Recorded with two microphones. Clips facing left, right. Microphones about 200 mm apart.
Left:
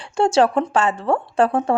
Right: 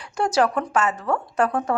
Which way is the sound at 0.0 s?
25° left (ahead or behind).